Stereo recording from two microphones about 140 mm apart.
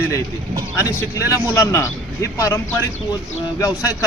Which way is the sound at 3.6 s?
25° left (ahead or behind).